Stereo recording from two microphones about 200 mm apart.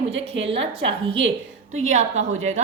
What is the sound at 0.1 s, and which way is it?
Speech, 65° right (ahead or behind).